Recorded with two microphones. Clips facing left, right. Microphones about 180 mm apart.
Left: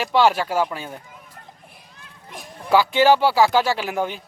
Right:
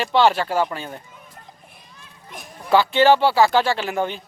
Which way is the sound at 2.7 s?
10° left (ahead or behind).